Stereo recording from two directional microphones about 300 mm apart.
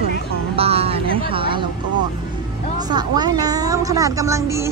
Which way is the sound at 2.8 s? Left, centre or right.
Centre.